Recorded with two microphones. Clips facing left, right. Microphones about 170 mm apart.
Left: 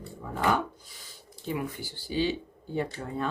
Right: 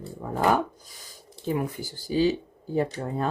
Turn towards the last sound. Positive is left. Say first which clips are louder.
# right 5 dB
turn(degrees=-40)  # may be behind; listen again after turning